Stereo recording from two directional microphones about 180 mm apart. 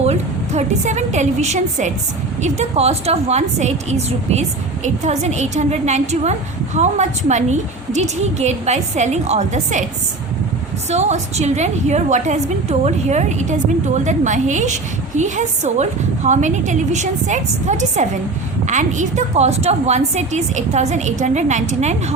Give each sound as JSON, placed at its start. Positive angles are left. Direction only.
{"t": 0.0, "sound": "a woman's voice", "side_deg": -35}
{"t": 10.8, "sound": "a woman's voice", "side_deg": -40}